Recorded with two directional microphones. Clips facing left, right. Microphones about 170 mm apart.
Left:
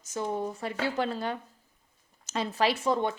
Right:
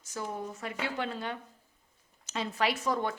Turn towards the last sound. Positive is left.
turn(degrees=25)  # may be behind; listen again after turning